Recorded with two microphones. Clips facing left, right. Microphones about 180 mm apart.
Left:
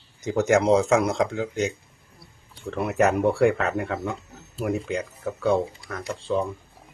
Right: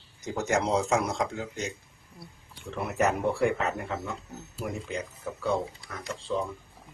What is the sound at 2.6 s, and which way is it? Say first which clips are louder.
Speech: left 5 dB; 65° left (ahead or behind).